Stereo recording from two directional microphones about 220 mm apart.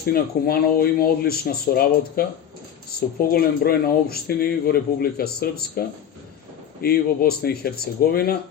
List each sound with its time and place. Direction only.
0.0 s speech: 45° left (ahead or behind)
6.8 s speech: 45° left (ahead or behind)